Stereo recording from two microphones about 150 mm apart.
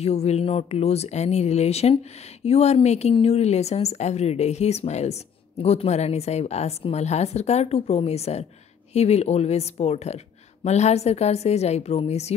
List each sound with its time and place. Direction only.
0.0 s speech: 45° left (ahead or behind)